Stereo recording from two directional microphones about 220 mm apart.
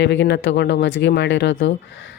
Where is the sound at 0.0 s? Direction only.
55° left (ahead or behind).